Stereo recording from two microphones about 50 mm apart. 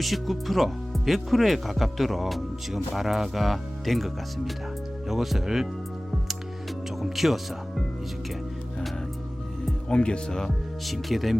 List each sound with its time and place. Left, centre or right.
0.0 s speech: centre
7.0 s speech: centre
9.9 s speech: centre
10.8 s speech: centre